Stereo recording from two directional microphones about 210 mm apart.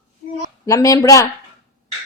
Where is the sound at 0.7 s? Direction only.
15° left (ahead or behind).